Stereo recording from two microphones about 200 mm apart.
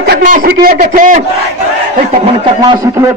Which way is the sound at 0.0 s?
50° right (ahead or behind).